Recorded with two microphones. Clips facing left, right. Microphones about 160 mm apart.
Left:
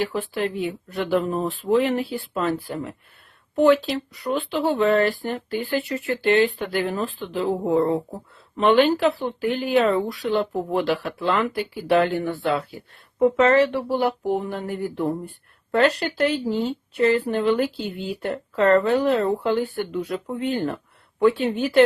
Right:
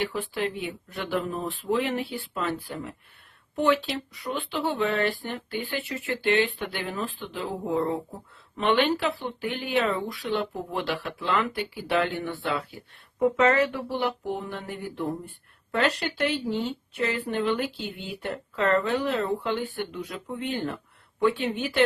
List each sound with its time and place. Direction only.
0.0 s a woman's voice: 35° left (ahead or behind)
7.6 s speech: 60° left (ahead or behind)
8.5 s a woman's voice: 40° left (ahead or behind)
14.0 s a sound: 45° left (ahead or behind)
15.7 s a woman's voice: 40° left (ahead or behind)